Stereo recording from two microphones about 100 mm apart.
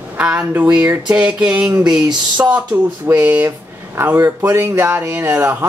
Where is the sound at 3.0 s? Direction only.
20° right (ahead or behind).